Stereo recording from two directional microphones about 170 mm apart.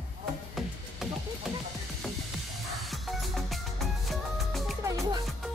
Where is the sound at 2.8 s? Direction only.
Centre (ahead or behind).